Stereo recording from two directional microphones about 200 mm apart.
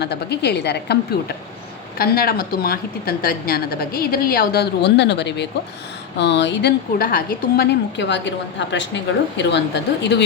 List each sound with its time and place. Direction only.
0.0 s a woman's voice: 55° left (ahead or behind)
2.0 s a woman's voice: 50° left (ahead or behind)